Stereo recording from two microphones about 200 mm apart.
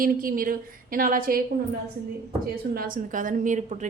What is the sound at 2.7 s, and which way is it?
A woman's voice, 45° right (ahead or behind).